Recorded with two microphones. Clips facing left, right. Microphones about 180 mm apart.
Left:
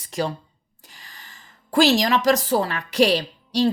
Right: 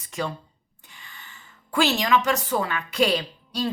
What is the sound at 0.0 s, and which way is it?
A woman's voice, 35° left (ahead or behind).